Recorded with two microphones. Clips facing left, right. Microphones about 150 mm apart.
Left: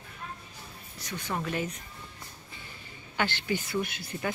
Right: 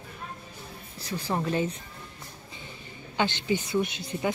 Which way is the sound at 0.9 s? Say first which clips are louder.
Right 4 dB; 30° right (ahead or behind).